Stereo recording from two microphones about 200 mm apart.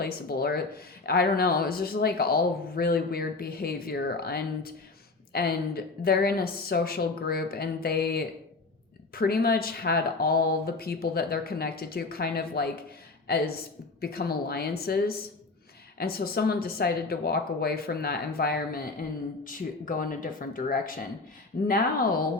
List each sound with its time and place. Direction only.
0.0 s a woman's voice: 50° left (ahead or behind)